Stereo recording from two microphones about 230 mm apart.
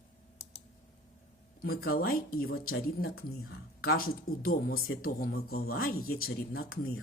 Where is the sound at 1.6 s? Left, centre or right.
Left.